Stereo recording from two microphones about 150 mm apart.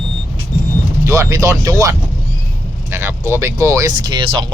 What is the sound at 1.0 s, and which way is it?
Speech, 20° right (ahead or behind).